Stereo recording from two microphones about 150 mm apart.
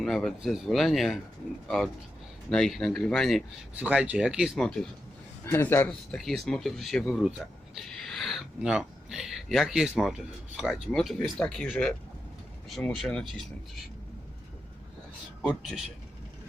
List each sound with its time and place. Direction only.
0.0 s speech: centre (ahead or behind)
3.8 s speech: 10° right (ahead or behind)
5.5 s a man's voice: 15° left (ahead or behind)
6.1 s speech: centre (ahead or behind)
15.4 s speech: 5° left (ahead or behind)